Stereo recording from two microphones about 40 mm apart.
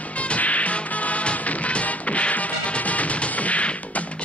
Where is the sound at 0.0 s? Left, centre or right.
Left.